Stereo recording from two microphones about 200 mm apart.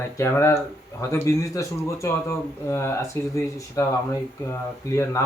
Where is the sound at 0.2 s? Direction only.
15° left (ahead or behind).